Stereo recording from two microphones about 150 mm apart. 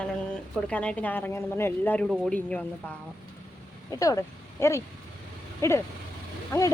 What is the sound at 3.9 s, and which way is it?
Speech, 20° left (ahead or behind).